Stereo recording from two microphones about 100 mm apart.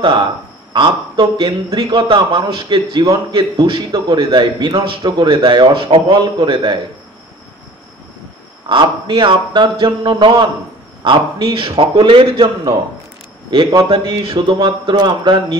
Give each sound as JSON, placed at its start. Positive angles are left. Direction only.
{"t": 0.0, "sound": "a man's voice", "side_deg": -55}
{"t": 8.6, "sound": "a man's voice", "side_deg": -50}
{"t": 13.8, "sound": "speech", "side_deg": -70}
{"t": 14.3, "sound": "a man's voice", "side_deg": -55}